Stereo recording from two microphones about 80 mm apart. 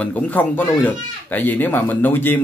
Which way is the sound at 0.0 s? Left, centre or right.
Centre.